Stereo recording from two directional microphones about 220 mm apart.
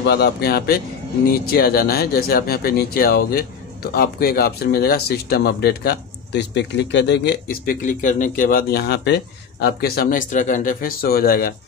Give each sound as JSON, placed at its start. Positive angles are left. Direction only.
{"t": 0.0, "sound": "speech", "side_deg": 50}